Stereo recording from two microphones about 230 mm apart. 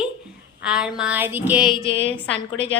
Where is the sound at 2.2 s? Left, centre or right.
Left.